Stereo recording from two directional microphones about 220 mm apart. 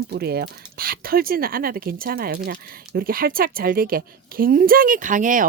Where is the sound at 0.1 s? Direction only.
45° right (ahead or behind).